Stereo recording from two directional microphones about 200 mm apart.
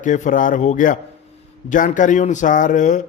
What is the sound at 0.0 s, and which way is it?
A man's voice, 40° left (ahead or behind).